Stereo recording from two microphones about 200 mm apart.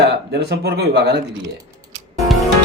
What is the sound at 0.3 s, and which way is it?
Speech, 55° right (ahead or behind).